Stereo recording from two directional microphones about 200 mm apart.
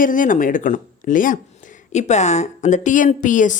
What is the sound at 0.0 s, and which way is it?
Speech, 40° left (ahead or behind).